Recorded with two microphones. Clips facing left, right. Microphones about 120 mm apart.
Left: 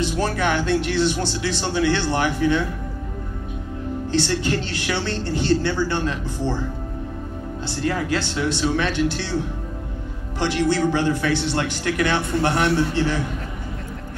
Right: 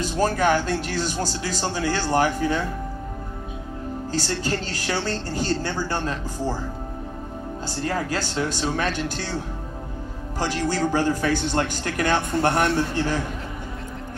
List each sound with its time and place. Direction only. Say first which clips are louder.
0.2 s speech: right 5 dB; 40° right (ahead or behind)
4.4 s speech: left 3 dB; 40° right (ahead or behind)
7.6 s a man's voice: left 3 dB; 40° right (ahead or behind)
10.4 s a man's voice: left 4 dB; 40° right (ahead or behind)